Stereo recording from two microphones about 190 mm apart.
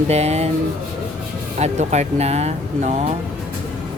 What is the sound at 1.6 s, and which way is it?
Speech, 35° right (ahead or behind).